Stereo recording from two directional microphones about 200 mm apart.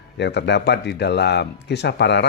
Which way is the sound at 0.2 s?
60° left (ahead or behind).